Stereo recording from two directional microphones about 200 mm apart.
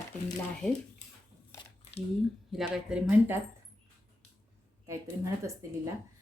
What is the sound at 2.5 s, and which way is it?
Speech, 5° right (ahead or behind).